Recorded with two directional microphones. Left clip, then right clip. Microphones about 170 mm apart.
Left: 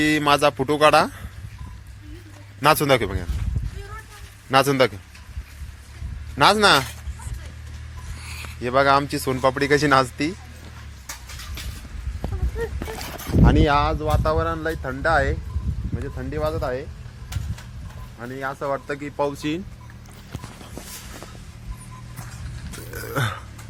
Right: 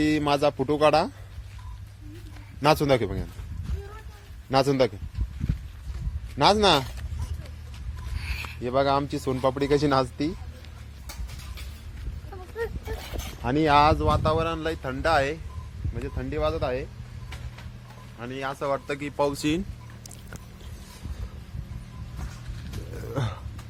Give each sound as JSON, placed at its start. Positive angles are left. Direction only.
{"t": 0.0, "sound": "speech", "side_deg": -10}
{"t": 2.6, "sound": "speech", "side_deg": -10}
{"t": 4.5, "sound": "speech", "side_deg": -10}
{"t": 6.3, "sound": "speech", "side_deg": -10}
{"t": 8.3, "sound": "speech", "side_deg": 0}
{"t": 13.4, "sound": "speech", "side_deg": -5}
{"t": 13.7, "sound": "speech", "side_deg": -70}
{"t": 14.3, "sound": "speech", "side_deg": 5}
{"t": 18.2, "sound": "speech", "side_deg": -5}
{"t": 19.3, "sound": "speech", "side_deg": -45}
{"t": 23.1, "sound": "a sound", "side_deg": 0}